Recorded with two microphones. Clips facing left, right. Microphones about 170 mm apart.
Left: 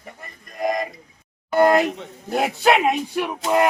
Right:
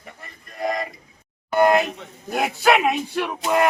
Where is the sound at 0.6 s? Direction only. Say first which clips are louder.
Left 2 dB; 15° left (ahead or behind).